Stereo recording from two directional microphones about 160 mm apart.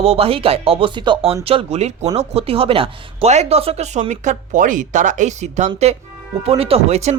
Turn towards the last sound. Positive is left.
turn(degrees=-40)  # may be behind; listen again after turning